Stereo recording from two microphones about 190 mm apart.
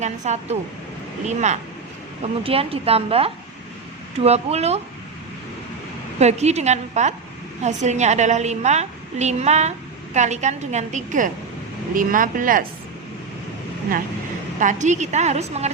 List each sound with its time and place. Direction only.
0.0 s a woman's voice: 35° right (ahead or behind)
6.1 s a woman's voice: 35° right (ahead or behind)
14.6 s a woman's voice: 40° right (ahead or behind)